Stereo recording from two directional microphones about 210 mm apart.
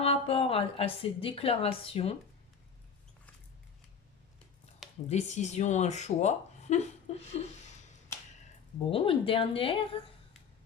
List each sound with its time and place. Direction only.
0.0 s a woman's voice: 25° left (ahead or behind)
5.0 s speech: 35° left (ahead or behind)
8.9 s a woman's voice: 25° left (ahead or behind)